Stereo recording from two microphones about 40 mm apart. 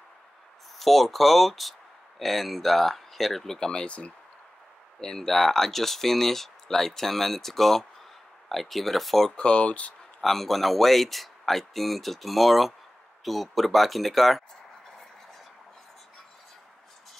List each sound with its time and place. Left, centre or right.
0.7 s speech: centre
3.8 s speech: left
5.0 s speech: centre
9.3 s speech: left
10.2 s speech: centre